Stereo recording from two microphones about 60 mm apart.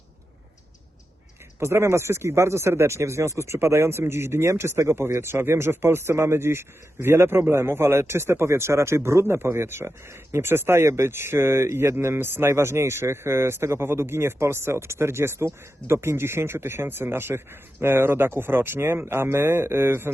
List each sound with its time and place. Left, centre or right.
1.5 s speech: right